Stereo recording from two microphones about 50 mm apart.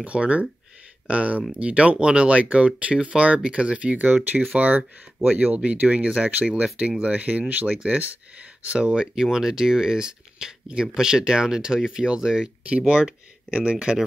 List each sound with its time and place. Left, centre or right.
0.0 s speech: right
7.1 s speech: right
8.9 s speech: centre
12.6 s speech: right